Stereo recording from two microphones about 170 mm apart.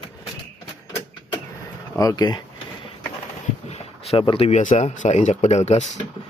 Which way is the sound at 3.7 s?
35° left (ahead or behind).